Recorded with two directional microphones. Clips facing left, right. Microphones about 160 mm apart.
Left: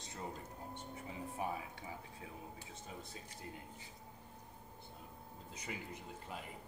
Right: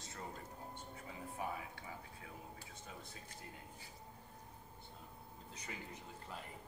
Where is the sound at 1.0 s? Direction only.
25° left (ahead or behind).